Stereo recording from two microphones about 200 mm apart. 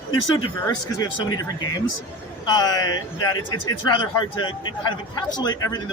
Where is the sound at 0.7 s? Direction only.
20° left (ahead or behind).